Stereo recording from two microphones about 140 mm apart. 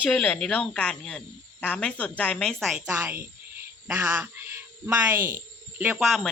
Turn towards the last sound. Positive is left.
turn(degrees=0)  # may be behind; listen again after turning